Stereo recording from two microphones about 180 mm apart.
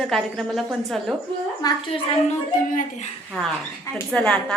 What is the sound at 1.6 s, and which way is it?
Speech, 20° left (ahead or behind).